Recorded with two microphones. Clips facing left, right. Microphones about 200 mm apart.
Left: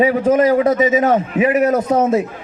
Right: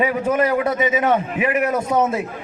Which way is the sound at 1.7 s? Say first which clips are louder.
Left 4 dB; 50° left (ahead or behind).